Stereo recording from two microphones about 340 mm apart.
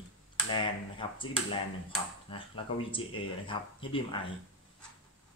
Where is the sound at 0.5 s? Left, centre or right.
Centre.